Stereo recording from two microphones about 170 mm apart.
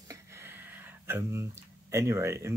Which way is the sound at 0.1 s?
15° right (ahead or behind).